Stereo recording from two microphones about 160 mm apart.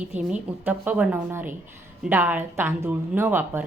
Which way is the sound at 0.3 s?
10° right (ahead or behind).